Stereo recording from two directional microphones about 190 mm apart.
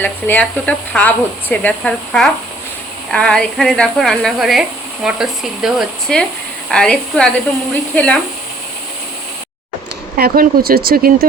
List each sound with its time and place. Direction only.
0.0 s speech: 10° left (ahead or behind)
10.2 s speech: 55° right (ahead or behind)